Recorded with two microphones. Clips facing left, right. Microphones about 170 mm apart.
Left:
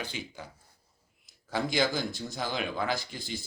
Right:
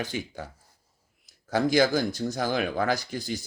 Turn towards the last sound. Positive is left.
turn(degrees=-45)  # may be behind; listen again after turning